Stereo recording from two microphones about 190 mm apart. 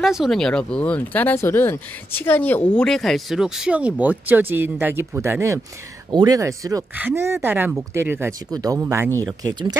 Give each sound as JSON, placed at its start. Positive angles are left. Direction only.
{"t": 0.0, "sound": "speech", "side_deg": 0}